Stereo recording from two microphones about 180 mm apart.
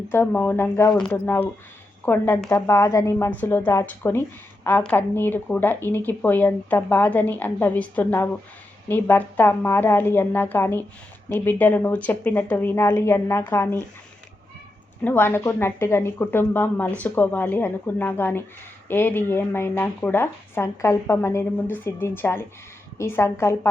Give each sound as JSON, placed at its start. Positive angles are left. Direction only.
{"t": 0.1, "sound": "speech", "side_deg": 10}
{"t": 15.0, "sound": "speech", "side_deg": 10}